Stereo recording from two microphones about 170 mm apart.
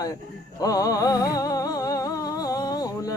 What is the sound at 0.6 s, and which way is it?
Music, 20° left (ahead or behind).